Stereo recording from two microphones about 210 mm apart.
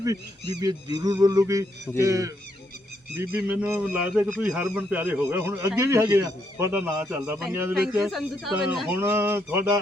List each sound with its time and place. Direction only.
0.0 s a man's voice: 15° right (ahead or behind)